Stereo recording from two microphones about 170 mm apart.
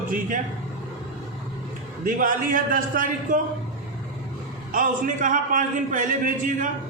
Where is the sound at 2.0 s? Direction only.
55° right (ahead or behind).